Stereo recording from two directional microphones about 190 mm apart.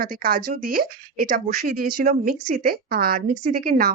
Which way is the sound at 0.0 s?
50° right (ahead or behind).